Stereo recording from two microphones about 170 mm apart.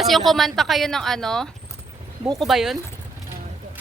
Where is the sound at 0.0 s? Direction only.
Centre (ahead or behind).